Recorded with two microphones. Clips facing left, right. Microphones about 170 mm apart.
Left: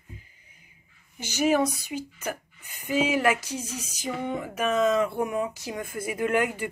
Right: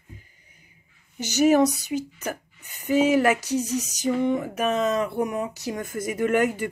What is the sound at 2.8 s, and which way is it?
Speech, 40° right (ahead or behind).